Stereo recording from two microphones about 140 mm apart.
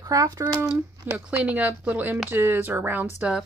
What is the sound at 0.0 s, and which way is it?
A woman's voice, 25° right (ahead or behind).